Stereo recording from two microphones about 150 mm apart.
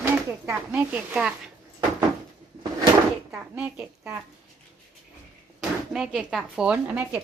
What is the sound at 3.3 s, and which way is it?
Speech, 5° right (ahead or behind).